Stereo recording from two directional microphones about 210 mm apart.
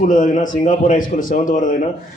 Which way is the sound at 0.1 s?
40° left (ahead or behind).